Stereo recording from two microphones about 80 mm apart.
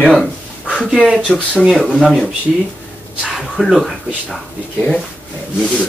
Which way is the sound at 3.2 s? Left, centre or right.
Centre.